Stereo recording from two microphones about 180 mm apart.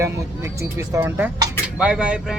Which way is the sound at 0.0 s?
15° right (ahead or behind).